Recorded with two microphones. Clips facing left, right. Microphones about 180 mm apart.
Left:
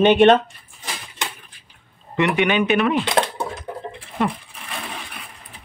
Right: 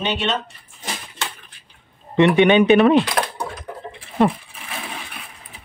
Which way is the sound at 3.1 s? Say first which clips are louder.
Left 3 dB; 25° left (ahead or behind).